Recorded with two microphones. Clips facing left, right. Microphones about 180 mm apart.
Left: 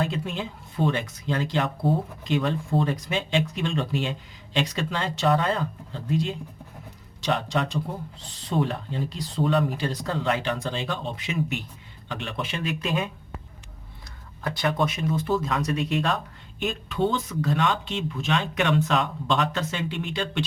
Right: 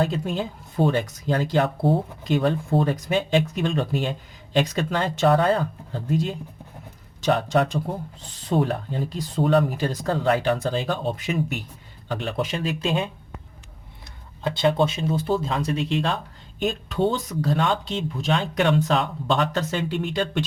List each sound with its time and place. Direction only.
0.0 s speech: 40° right (ahead or behind)